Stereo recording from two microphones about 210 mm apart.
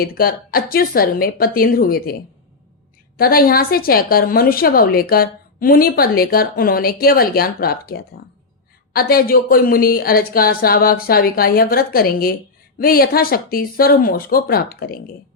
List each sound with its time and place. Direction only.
0.0 s a woman's voice: 45° left (ahead or behind)
3.2 s a woman's voice: 45° left (ahead or behind)